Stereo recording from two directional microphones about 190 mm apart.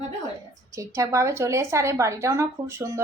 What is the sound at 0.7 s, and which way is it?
A woman's voice, 15° right (ahead or behind).